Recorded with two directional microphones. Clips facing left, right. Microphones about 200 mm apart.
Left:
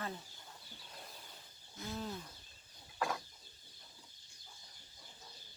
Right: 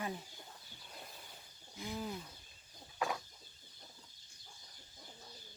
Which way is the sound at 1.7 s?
15° right (ahead or behind).